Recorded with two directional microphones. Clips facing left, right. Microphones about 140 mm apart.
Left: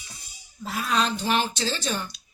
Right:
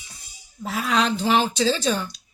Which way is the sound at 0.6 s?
90° right.